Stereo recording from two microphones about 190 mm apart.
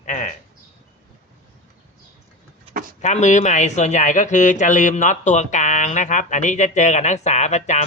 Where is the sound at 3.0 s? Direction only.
40° left (ahead or behind).